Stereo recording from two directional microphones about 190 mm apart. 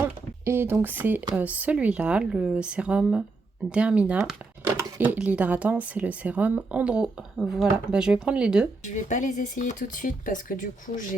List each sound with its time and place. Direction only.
0.0 s speech: 10° right (ahead or behind)
8.8 s speech: 40° left (ahead or behind)